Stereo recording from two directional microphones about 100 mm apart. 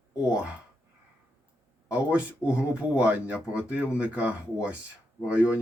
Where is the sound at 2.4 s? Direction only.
10° right (ahead or behind).